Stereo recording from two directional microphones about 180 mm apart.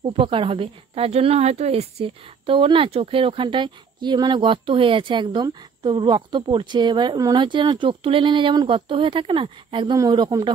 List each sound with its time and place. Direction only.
0.0 s a woman's voice: 30° right (ahead or behind)